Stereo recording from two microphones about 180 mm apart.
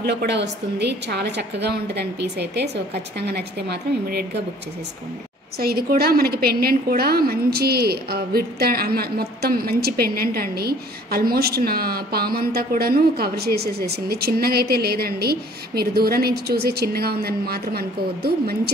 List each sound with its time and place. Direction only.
0.0 s a woman's voice: 65° right (ahead or behind)
5.6 s a woman's voice: 55° right (ahead or behind)